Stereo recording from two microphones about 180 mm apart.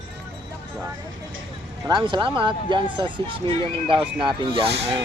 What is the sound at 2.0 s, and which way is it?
Speech, 25° right (ahead or behind).